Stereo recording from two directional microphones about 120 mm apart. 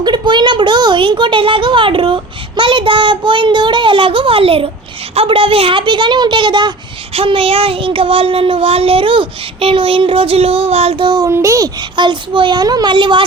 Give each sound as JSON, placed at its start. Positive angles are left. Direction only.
{"t": 0.0, "sound": "a child's voice", "side_deg": -40}
{"t": 7.1, "sound": "a child's voice", "side_deg": -50}
{"t": 11.3, "sound": "a child's voice", "side_deg": -25}